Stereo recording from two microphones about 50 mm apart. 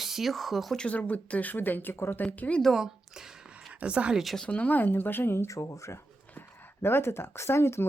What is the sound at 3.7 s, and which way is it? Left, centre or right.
Speech, right.